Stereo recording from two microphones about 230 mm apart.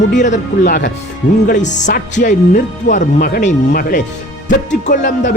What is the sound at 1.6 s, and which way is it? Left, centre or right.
Speech, left.